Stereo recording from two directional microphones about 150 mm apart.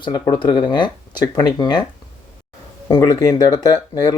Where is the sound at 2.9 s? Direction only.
25° left (ahead or behind).